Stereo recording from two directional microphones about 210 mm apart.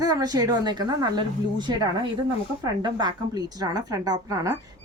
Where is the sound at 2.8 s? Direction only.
20° right (ahead or behind).